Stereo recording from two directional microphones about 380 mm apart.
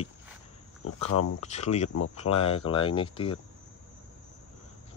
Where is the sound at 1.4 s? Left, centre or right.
Centre.